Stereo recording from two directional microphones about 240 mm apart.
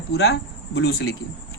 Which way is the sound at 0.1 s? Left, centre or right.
Left.